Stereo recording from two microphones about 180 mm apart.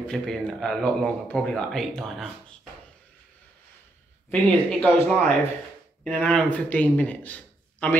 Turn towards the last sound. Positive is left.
turn(degrees=10)  # may be behind; listen again after turning